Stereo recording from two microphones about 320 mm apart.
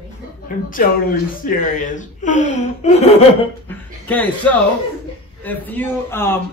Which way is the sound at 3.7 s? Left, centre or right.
Centre.